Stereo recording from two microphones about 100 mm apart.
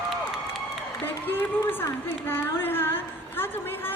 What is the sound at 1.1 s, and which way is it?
A woman's voice, 20° left (ahead or behind).